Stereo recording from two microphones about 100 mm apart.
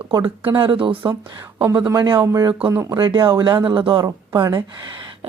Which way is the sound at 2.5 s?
20° right (ahead or behind).